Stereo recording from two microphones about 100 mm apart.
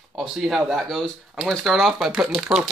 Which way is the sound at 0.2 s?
Centre (ahead or behind).